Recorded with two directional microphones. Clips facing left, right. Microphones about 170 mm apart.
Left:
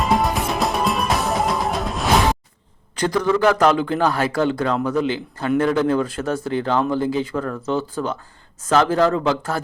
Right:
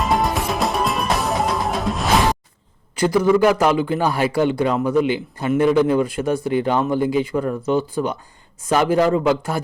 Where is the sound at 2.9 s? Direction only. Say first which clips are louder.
Right 3 dB; 10° right (ahead or behind).